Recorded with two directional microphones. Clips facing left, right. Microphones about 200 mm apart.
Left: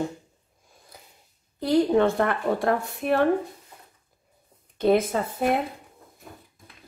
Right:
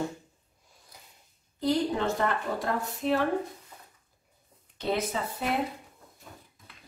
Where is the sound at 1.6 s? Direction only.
60° left (ahead or behind).